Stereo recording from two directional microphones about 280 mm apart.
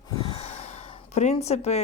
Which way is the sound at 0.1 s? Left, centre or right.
Centre.